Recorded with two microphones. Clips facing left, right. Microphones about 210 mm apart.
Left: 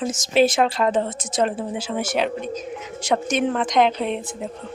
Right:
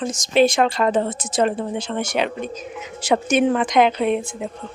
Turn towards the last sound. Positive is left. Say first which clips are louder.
# right 5 dB
turn(degrees=-5)  # may be behind; listen again after turning